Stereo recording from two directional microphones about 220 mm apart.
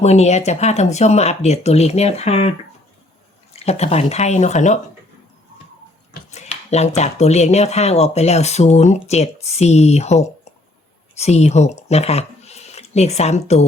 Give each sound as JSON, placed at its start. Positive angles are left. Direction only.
{"t": 0.0, "sound": "speech", "side_deg": 30}
{"t": 3.5, "sound": "speech", "side_deg": 30}
{"t": 6.3, "sound": "speech", "side_deg": 30}